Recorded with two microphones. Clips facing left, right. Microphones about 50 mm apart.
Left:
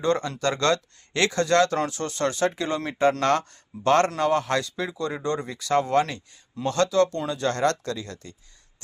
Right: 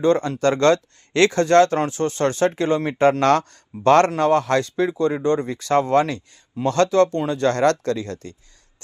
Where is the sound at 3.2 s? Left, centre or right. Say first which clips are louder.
Right 5 dB; right.